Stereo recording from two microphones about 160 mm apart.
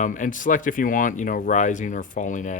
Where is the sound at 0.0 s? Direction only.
55° left (ahead or behind).